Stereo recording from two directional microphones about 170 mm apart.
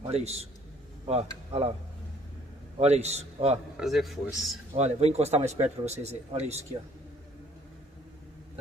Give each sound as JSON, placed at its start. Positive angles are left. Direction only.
{"t": 0.0, "sound": "a man's voice", "side_deg": -40}
{"t": 2.8, "sound": "speech", "side_deg": -40}
{"t": 3.7, "sound": "a man's voice", "side_deg": 0}
{"t": 4.7, "sound": "speech", "side_deg": -40}